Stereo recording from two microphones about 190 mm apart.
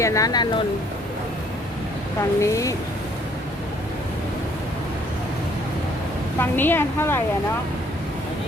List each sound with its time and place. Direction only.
0.0 s speech: 15° left (ahead or behind)
2.4 s a woman's voice: 15° left (ahead or behind)
6.4 s a woman's voice: 10° left (ahead or behind)